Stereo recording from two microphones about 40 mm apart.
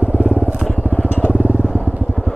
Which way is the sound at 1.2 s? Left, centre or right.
Left.